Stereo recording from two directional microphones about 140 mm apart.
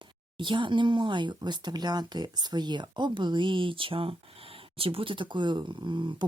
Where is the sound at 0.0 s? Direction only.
35° right (ahead or behind).